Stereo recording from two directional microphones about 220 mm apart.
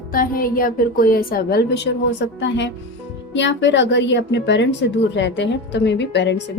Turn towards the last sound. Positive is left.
turn(degrees=50)  # may be behind; listen again after turning